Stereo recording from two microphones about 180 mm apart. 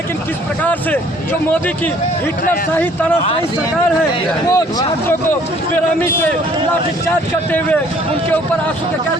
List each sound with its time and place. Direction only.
0.6 s speech: 10° left (ahead or behind)
4.5 s speech: 15° left (ahead or behind)